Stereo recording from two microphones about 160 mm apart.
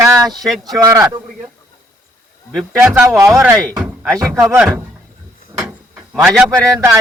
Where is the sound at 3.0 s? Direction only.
20° right (ahead or behind).